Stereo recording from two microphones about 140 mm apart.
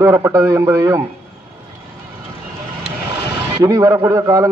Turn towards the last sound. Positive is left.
turn(degrees=-25)  # may be behind; listen again after turning